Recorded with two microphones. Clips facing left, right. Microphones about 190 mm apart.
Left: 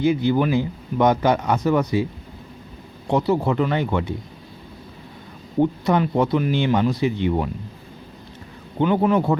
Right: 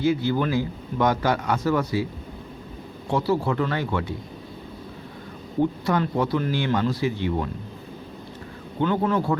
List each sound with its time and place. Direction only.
0.0 s a man's voice: 20° left (ahead or behind)
3.1 s a man's voice: 20° left (ahead or behind)
5.8 s a man's voice: 20° left (ahead or behind)
8.8 s a man's voice: 15° left (ahead or behind)